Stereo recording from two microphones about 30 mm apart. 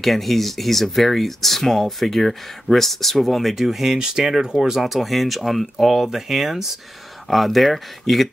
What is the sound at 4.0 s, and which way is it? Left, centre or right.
Speech, right.